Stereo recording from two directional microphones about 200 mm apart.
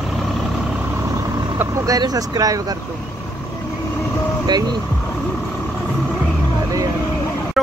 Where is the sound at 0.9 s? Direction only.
15° right (ahead or behind).